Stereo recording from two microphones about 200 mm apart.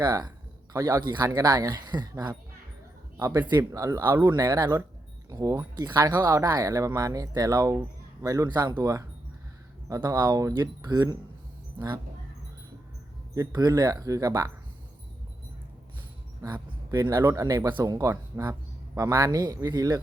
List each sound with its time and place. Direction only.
0.0 s speech: 20° right (ahead or behind)
13.3 s speech: 20° right (ahead or behind)
16.4 s speech: 20° right (ahead or behind)